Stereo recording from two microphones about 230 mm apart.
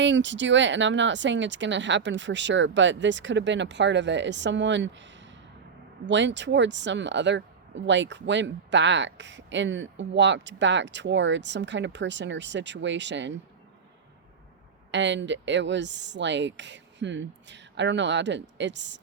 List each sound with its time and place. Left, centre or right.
0.0 s speech: right
14.8 s speech: right